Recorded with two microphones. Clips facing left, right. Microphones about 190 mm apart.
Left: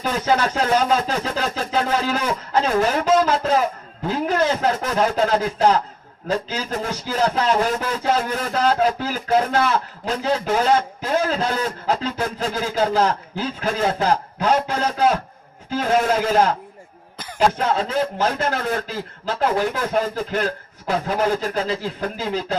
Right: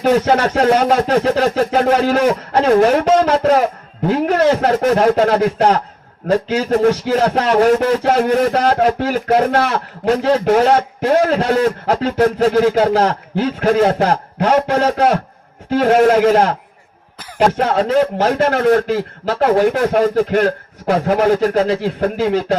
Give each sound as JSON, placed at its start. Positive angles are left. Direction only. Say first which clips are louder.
{"t": 0.0, "sound": "speech", "louder": "right 7 dB", "side_deg": -65}